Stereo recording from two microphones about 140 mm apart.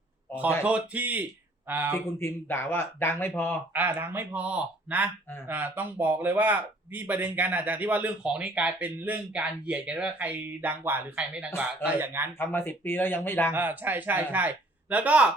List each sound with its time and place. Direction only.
0.6 s a man's voice: 10° right (ahead or behind)
2.0 s speech: 15° left (ahead or behind)
3.7 s a man's voice: 15° right (ahead or behind)
12.4 s speech: 15° left (ahead or behind)
13.5 s a man's voice: 15° right (ahead or behind)